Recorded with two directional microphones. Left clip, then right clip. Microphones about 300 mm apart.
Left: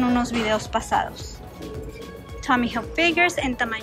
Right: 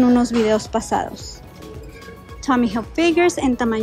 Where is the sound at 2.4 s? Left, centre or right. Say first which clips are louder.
Right 2 dB; centre.